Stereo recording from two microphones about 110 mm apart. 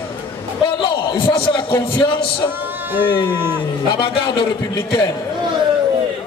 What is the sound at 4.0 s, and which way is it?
Speech, 45° left (ahead or behind).